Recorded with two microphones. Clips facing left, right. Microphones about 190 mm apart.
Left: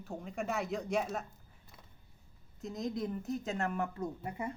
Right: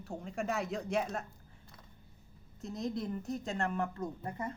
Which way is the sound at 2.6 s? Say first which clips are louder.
Even; centre (ahead or behind).